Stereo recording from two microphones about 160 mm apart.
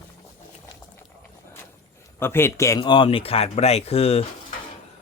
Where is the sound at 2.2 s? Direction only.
15° left (ahead or behind); by 4.2 s 40° left (ahead or behind).